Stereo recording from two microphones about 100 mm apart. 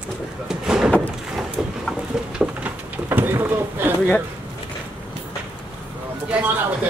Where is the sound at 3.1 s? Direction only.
25° right (ahead or behind).